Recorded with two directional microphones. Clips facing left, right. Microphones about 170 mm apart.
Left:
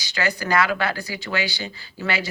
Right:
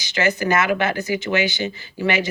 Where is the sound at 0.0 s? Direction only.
20° right (ahead or behind).